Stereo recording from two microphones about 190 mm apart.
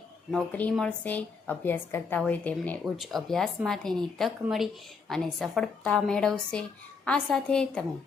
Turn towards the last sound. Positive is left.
turn(degrees=5)  # may be behind; listen again after turning